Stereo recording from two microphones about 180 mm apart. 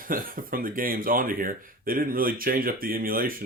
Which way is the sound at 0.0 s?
50° right (ahead or behind).